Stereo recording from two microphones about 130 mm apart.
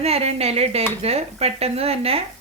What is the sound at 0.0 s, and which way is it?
Speech, 55° right (ahead or behind).